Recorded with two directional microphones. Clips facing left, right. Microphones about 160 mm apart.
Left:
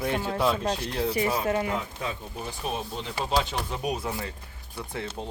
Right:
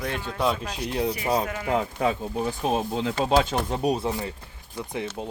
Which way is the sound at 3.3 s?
50° right (ahead or behind).